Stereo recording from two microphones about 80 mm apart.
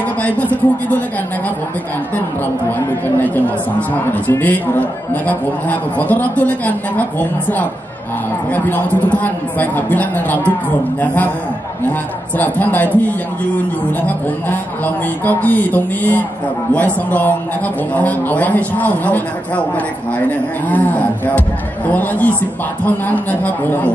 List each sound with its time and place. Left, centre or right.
0.2 s a man's voice: left
3.2 s a man's voice: left
12.4 s a man's voice: left
15.2 s a man's voice: left